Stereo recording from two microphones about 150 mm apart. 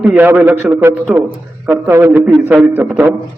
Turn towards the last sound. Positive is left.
turn(degrees=-15)  # may be behind; listen again after turning